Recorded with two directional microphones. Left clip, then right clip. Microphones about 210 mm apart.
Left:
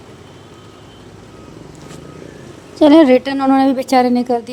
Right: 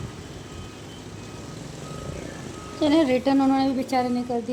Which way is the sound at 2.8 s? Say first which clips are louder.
Left 12 dB; 40° left (ahead or behind).